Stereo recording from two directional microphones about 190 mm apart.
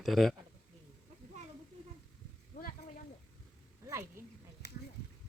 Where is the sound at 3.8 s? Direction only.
15° right (ahead or behind).